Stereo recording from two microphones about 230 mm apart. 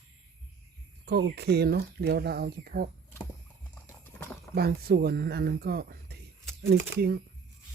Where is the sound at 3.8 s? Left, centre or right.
Centre.